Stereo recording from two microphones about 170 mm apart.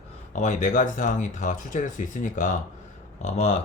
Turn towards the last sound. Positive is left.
turn(degrees=40)  # may be behind; listen again after turning